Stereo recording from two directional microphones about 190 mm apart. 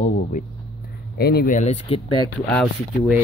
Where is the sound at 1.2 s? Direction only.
55° left (ahead or behind); by 2.0 s 35° left (ahead or behind).